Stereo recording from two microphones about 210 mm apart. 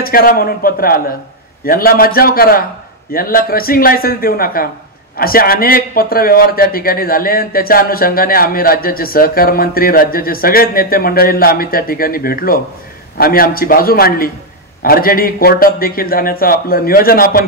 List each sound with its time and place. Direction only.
0.0 s a man's voice: 45° left (ahead or behind)